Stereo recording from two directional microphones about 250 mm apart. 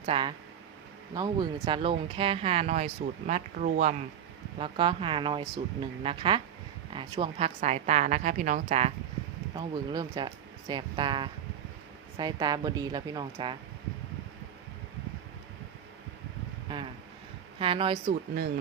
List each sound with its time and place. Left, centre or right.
0.0 s speech: right
9.6 s speech: centre
16.6 s a sound: centre
17.6 s speech: right